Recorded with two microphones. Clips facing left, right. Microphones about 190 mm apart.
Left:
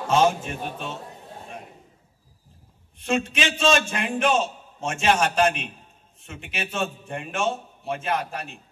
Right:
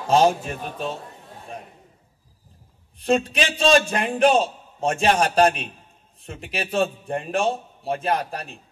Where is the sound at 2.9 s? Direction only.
35° right (ahead or behind).